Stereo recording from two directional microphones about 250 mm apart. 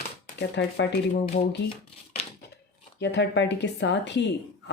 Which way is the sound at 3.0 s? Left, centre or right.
Left.